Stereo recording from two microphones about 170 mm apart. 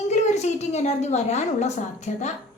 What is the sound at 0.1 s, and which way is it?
A woman's voice, 40° left (ahead or behind).